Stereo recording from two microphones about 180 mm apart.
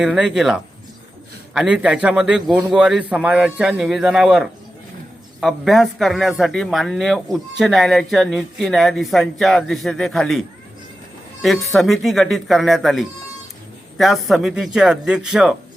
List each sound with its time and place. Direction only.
0.0 s speech: 5° right (ahead or behind)
11.4 s speech: centre (ahead or behind)